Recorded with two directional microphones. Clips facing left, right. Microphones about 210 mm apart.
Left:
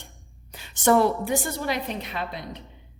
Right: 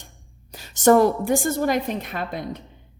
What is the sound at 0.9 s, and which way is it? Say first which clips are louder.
A woman's voice: right 4 dB; 45° right (ahead or behind).